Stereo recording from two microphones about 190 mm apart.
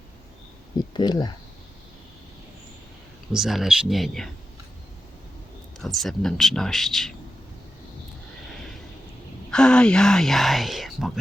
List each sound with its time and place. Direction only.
0.9 s speech: 20° left (ahead or behind)
3.3 s speech: centre (ahead or behind)
5.8 s speech: centre (ahead or behind)
9.5 s speech: 5° left (ahead or behind)